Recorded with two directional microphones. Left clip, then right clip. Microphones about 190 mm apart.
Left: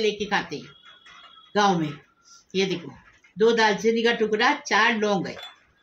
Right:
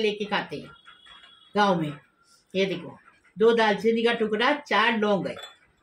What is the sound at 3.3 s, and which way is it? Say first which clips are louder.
Speech: left 1 dB; 30° left (ahead or behind).